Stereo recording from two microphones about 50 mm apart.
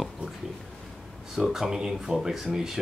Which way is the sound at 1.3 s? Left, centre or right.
Centre.